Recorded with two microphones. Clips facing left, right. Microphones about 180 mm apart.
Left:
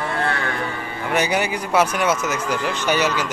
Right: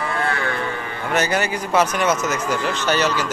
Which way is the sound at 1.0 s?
15° left (ahead or behind).